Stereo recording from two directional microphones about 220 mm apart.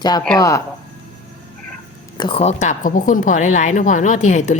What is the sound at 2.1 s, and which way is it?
A woman's voice, 20° left (ahead or behind).